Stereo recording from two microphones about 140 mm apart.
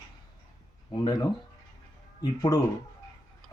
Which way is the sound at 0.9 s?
30° left (ahead or behind).